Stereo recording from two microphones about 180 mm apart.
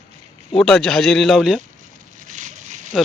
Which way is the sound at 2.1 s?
45° right (ahead or behind).